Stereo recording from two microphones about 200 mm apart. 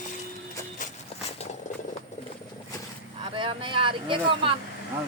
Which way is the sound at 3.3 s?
25° right (ahead or behind).